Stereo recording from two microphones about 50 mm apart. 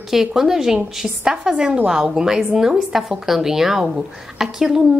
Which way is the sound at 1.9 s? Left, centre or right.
Centre.